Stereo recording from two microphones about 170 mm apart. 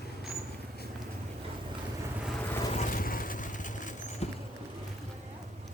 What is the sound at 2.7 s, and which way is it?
Vehicle, 50° left (ahead or behind).